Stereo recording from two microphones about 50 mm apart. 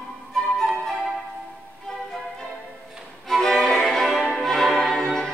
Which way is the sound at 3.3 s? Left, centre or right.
Centre.